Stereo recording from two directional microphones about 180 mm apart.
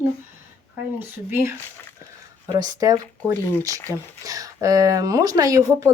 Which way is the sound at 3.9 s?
15° left (ahead or behind).